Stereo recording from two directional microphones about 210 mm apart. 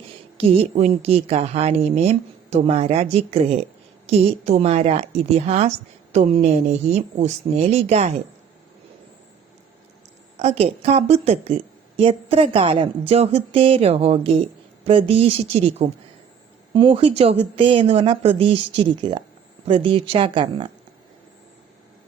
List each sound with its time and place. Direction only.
0.3 s a woman's voice: 30° right (ahead or behind)
10.3 s a woman's voice: 30° right (ahead or behind)